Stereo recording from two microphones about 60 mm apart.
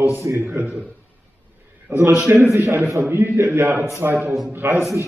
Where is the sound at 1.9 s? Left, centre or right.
Right.